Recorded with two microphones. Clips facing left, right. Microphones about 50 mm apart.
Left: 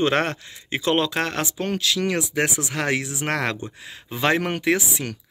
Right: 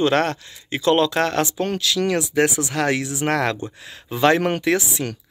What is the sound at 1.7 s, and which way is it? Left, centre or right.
Speech, left.